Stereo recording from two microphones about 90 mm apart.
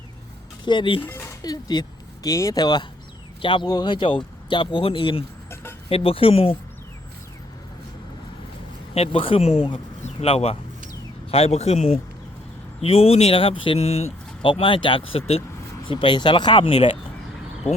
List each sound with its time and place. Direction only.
0.6 s speech: 60° left (ahead or behind)
1.0 s speech: 25° left (ahead or behind)
1.4 s speech: 45° left (ahead or behind)
2.3 s speech: 40° left (ahead or behind)
3.4 s speech: 70° left (ahead or behind)
3.7 s speech: 55° left (ahead or behind); by 6.6 s 90° left
9.0 s speech: 90° left
12.8 s speech: 90° left
14.4 s speech: 75° left (ahead or behind)
15.9 s speech: 65° left (ahead or behind); by 17.0 s 85° left